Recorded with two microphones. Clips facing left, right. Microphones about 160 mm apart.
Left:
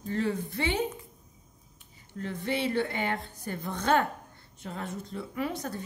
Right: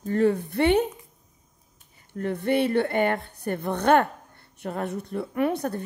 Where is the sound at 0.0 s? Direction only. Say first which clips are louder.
Right 8 dB; 50° right (ahead or behind).